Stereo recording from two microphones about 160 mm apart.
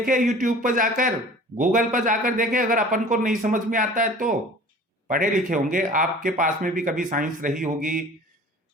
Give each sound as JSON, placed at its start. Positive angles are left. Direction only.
{"t": 0.3, "sound": "a man's voice", "side_deg": -55}